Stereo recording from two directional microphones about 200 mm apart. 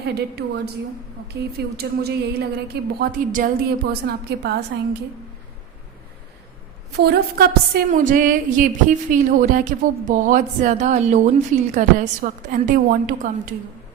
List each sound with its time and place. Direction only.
0.2 s a woman's voice: 55° right (ahead or behind)
6.9 s a woman's voice: 55° right (ahead or behind)